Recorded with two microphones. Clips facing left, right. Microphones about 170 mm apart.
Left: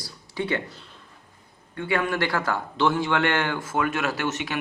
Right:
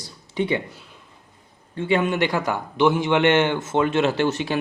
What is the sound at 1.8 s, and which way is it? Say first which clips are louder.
A man's voice: right 4 dB; 20° right (ahead or behind).